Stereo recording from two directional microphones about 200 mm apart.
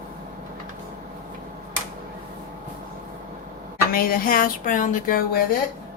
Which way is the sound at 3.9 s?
45° left (ahead or behind).